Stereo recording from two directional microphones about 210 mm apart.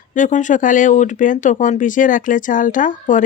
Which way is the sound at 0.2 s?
35° left (ahead or behind).